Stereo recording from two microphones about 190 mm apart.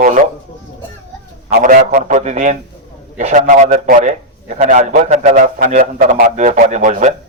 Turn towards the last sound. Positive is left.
turn(degrees=-40)  # may be behind; listen again after turning